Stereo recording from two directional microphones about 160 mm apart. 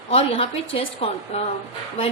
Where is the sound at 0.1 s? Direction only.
40° left (ahead or behind).